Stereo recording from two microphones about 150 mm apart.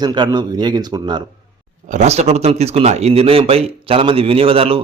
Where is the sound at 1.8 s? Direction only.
50° right (ahead or behind).